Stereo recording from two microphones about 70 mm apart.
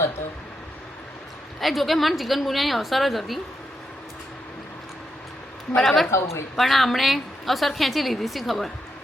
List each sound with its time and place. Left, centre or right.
1.6 s a woman's voice: centre
5.7 s a woman's voice: centre
6.1 s a woman's voice: left
6.6 s a woman's voice: centre